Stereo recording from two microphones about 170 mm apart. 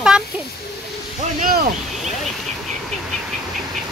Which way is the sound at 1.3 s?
50° right (ahead or behind).